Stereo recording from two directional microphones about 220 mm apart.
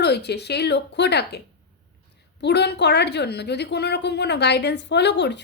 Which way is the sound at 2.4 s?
50° left (ahead or behind).